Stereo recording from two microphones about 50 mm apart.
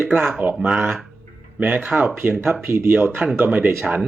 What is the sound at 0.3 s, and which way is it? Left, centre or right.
Speech, right.